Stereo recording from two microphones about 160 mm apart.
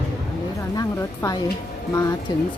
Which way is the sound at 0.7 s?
20° left (ahead or behind).